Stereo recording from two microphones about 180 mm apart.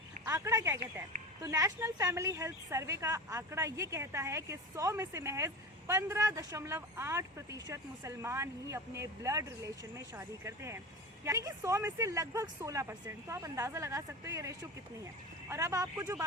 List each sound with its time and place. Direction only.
0.3 s speech: 15° right (ahead or behind)